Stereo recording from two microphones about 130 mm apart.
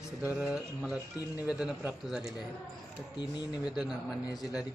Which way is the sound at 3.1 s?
35° left (ahead or behind).